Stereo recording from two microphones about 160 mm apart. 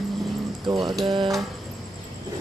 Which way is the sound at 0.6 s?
25° right (ahead or behind).